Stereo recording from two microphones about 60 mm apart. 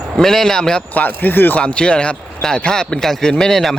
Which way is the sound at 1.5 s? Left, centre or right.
Centre.